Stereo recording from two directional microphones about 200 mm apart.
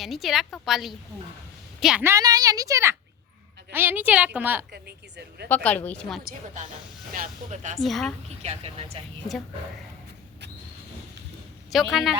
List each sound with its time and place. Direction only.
0.0 s a woman's voice: centre (ahead or behind)
4.7 s speech: 55° right (ahead or behind)
5.5 s speech: 10° left (ahead or behind)
6.2 s speech: 35° right (ahead or behind)
7.8 s a woman's voice: centre (ahead or behind)
8.4 s speech: 30° right (ahead or behind)
11.7 s a woman's voice: centre (ahead or behind)